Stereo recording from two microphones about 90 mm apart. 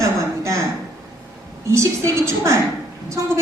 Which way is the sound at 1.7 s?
35° right (ahead or behind).